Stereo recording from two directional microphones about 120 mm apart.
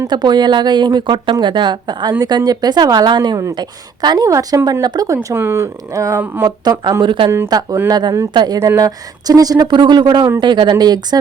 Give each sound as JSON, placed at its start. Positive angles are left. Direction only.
{"t": 0.1, "sound": "a woman's voice", "side_deg": -35}
{"t": 7.0, "sound": "a woman's voice", "side_deg": -40}
{"t": 8.5, "sound": "a woman's voice", "side_deg": -30}